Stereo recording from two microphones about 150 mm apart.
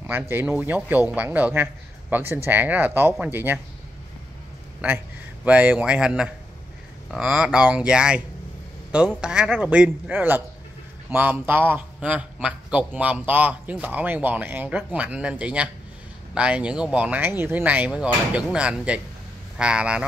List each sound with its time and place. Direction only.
0.0 s a man's voice: 15° right (ahead or behind)
4.8 s a man's voice: 10° right (ahead or behind)